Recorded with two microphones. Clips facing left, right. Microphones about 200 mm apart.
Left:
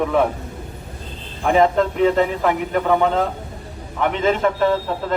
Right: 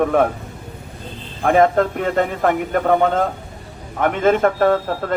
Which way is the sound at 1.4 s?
50° right (ahead or behind).